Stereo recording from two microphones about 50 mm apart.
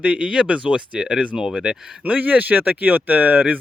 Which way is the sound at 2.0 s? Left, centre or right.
Right.